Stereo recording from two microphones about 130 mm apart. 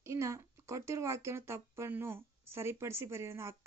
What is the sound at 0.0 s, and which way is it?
Speech, 25° right (ahead or behind).